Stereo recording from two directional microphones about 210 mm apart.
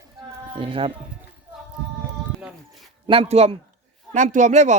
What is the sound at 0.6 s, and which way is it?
Speech, 25° right (ahead or behind).